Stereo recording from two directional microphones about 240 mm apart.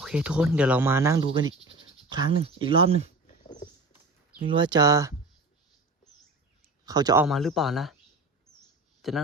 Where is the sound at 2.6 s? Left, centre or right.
Right.